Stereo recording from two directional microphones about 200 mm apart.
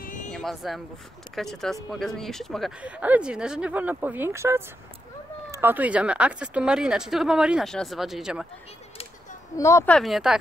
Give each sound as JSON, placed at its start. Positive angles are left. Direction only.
{"t": 0.0, "sound": "a sound", "side_deg": 40}
{"t": 0.3, "sound": "speech", "side_deg": 0}
{"t": 9.6, "sound": "speech", "side_deg": 15}
{"t": 9.9, "sound": "speech", "side_deg": 0}